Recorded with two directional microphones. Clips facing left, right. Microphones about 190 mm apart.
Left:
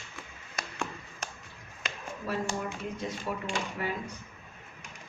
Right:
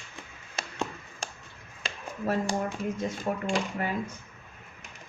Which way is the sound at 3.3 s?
50° right (ahead or behind).